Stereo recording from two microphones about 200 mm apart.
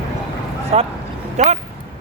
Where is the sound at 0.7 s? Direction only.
30° right (ahead or behind).